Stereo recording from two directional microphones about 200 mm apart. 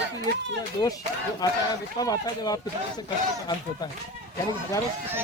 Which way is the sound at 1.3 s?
20° left (ahead or behind).